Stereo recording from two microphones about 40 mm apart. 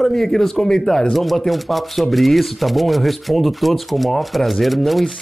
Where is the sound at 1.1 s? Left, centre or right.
Centre.